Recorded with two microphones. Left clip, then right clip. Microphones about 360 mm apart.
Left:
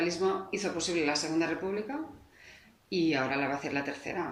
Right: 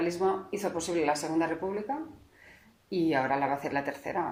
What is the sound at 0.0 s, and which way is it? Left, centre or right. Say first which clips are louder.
Speech: right 1 dB; right.